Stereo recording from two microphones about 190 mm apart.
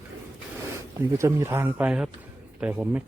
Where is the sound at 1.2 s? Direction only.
15° right (ahead or behind).